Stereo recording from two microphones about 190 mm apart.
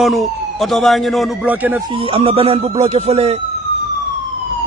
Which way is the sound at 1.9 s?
30° right (ahead or behind).